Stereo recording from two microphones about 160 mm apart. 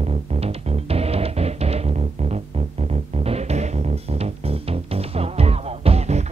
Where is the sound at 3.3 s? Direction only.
40° right (ahead or behind).